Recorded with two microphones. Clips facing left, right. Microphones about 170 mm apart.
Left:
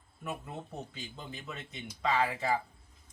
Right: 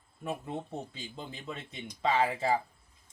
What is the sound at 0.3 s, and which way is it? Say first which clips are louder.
Speech: right 4 dB; 30° right (ahead or behind).